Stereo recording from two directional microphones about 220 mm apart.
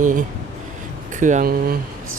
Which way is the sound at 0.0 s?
35° right (ahead or behind).